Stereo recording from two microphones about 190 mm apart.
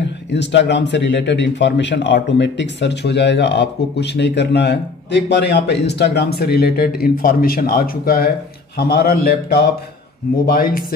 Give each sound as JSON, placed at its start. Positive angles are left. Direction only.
{"t": 0.3, "sound": "a man's voice", "side_deg": 65}